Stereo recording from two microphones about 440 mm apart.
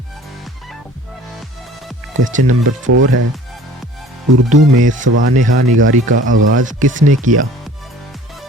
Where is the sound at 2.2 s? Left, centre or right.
Centre.